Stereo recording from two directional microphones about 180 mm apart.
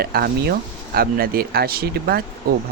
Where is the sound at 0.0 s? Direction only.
60° right (ahead or behind).